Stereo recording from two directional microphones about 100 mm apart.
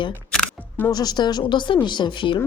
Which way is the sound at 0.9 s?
40° left (ahead or behind).